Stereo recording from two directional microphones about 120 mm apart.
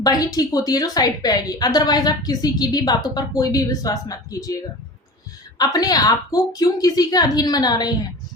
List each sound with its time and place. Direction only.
0.0 s a woman's voice: 30° left (ahead or behind)
5.5 s a woman's voice: 30° left (ahead or behind)